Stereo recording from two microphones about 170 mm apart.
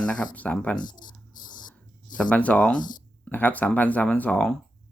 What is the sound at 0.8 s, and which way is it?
Speech, 25° left (ahead or behind).